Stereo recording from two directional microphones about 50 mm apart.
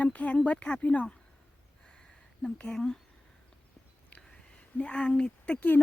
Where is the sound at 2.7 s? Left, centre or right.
Centre.